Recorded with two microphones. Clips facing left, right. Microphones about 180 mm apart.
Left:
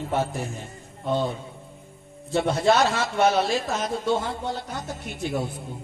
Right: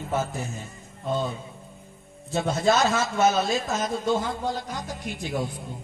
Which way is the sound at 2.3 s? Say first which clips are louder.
Left 2 dB; 65° left (ahead or behind).